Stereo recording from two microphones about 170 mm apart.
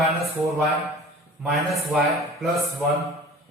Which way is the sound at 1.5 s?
Centre (ahead or behind).